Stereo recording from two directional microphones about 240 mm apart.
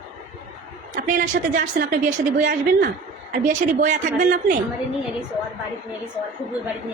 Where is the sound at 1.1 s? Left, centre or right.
Right.